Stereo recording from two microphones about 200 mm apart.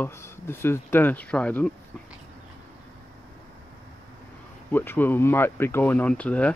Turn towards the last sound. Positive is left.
turn(degrees=5)  # may be behind; listen again after turning